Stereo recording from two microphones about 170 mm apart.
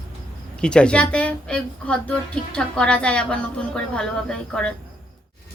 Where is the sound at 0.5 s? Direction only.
5° left (ahead or behind).